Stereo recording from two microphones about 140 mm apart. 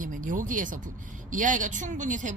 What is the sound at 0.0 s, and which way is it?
Speech, 70° right (ahead or behind).